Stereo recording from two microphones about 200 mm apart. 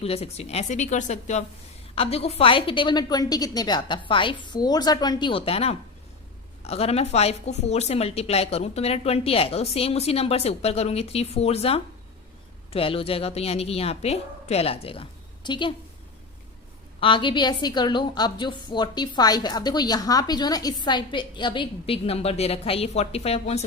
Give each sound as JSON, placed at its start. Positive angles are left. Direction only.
{"t": 0.0, "sound": "a woman's voice", "side_deg": 30}
{"t": 17.0, "sound": "a woman's voice", "side_deg": 25}